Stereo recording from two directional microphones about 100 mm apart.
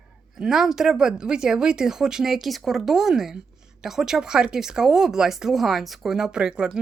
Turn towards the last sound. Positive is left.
turn(degrees=-10)  # may be behind; listen again after turning